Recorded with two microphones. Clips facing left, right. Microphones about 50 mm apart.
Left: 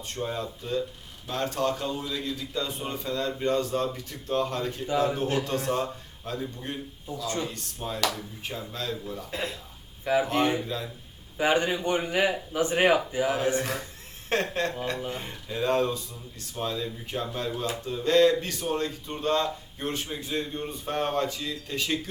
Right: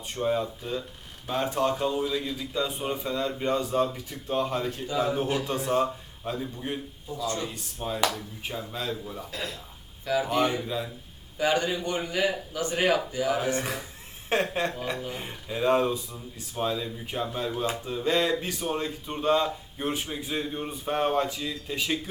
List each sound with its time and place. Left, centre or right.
0.1 s speech: centre
9.3 s a man's voice: left
10.7 s speech: centre
11.3 s a man's voice: left
13.6 s a man's voice: centre